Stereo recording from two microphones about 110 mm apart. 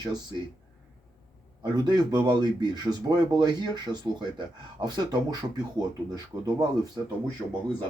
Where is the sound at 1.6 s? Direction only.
40° right (ahead or behind).